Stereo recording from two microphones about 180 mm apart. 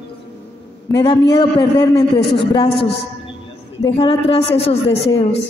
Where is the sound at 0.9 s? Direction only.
30° left (ahead or behind).